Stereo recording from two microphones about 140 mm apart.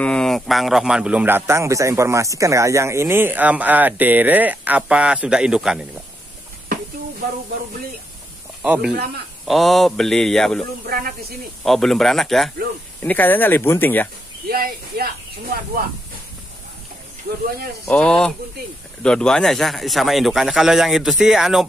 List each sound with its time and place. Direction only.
0.0 s speech: 5° left (ahead or behind)
8.6 s a man's voice: 10° right (ahead or behind)
10.9 s speech: 90° right
11.6 s a man's voice: centre (ahead or behind)
13.0 s speech: 10° left (ahead or behind)
14.5 s speech: 90° right
17.8 s a man's voice: 5° left (ahead or behind)